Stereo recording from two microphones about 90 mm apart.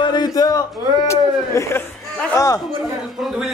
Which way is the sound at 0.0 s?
50° left (ahead or behind).